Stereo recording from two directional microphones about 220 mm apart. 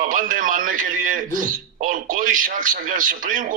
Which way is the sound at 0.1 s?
35° right (ahead or behind).